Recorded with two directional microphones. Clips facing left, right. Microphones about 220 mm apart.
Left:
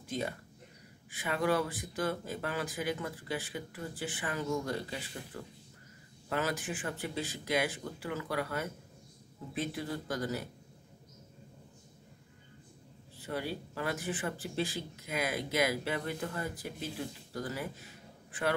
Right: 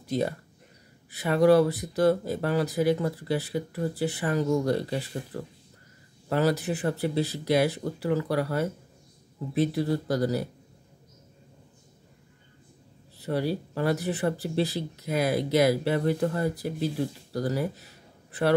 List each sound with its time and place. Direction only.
0.0 s speech: 40° right (ahead or behind)
13.2 s speech: 40° right (ahead or behind)